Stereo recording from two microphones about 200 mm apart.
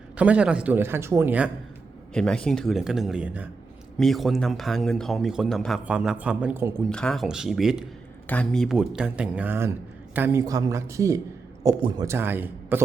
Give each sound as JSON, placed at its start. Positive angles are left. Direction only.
{"t": 0.2, "sound": "speech", "side_deg": -5}
{"t": 2.1, "sound": "speech", "side_deg": 5}
{"t": 6.9, "sound": "a man's voice", "side_deg": 5}
{"t": 12.0, "sound": "speech", "side_deg": -10}